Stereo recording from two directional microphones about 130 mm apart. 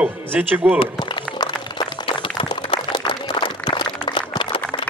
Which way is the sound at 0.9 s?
35° left (ahead or behind).